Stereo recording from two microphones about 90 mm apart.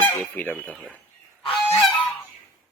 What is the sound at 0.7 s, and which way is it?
Speech, 15° right (ahead or behind).